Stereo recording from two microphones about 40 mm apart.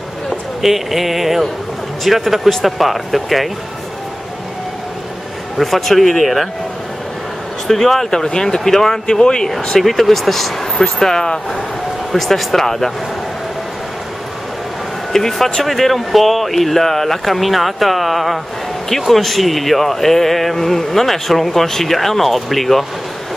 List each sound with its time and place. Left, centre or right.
0.6 s speech: centre
5.6 s speech: centre
7.6 s speech: centre
9.0 s speech: centre
9.7 s speech: centre
12.1 s speech: centre
15.1 s speech: centre